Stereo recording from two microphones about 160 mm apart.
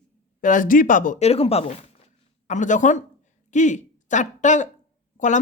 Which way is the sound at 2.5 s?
50° left (ahead or behind).